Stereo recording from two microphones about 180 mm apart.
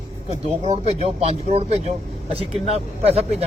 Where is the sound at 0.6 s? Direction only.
35° right (ahead or behind).